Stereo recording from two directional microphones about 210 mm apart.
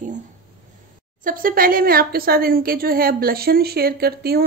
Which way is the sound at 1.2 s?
40° right (ahead or behind).